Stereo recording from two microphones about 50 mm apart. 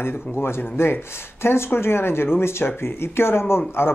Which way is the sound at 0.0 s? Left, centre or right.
Left.